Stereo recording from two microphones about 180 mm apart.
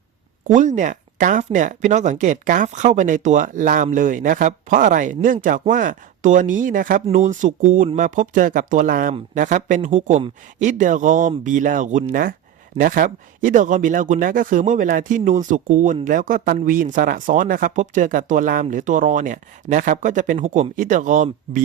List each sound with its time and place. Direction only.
0.4 s speech: 40° right (ahead or behind)